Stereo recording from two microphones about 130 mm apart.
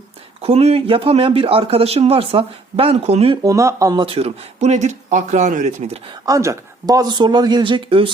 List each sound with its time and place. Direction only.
0.4 s speech: 50° right (ahead or behind)
3.4 s speech: 25° right (ahead or behind)
4.0 s speech: 45° right (ahead or behind)
4.6 s speech: 65° right (ahead or behind)
6.2 s speech: 25° right (ahead or behind); by 8.1 s 40° right (ahead or behind)